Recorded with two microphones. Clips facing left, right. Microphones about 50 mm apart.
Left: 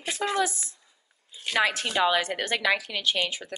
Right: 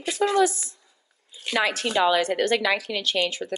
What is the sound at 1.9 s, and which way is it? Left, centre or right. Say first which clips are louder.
Speech: right 3 dB; centre.